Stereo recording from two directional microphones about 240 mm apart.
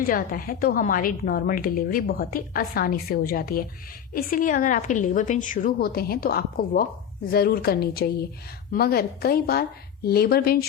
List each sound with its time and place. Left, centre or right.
0.0 s a woman's voice: left